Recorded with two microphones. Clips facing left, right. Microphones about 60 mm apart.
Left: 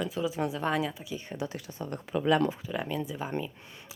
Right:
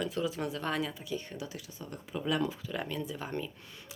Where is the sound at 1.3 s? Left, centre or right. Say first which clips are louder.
Left 6 dB; left.